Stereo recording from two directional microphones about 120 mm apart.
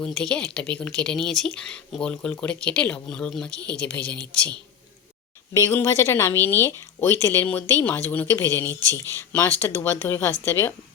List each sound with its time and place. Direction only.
0.0 s speech: 5° left (ahead or behind)
5.5 s a woman's voice: 25° left (ahead or behind)